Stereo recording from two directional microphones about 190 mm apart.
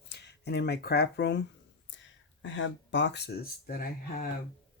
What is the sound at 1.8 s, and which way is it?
Speech, 75° left (ahead or behind).